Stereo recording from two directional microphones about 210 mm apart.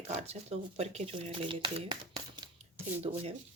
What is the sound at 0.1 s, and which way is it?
Speech, 30° right (ahead or behind).